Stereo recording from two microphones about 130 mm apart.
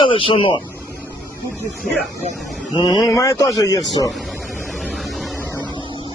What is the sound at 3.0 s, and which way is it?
Speech, 25° left (ahead or behind).